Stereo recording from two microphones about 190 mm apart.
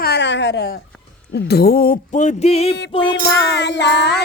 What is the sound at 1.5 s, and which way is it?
Music, 55° left (ahead or behind).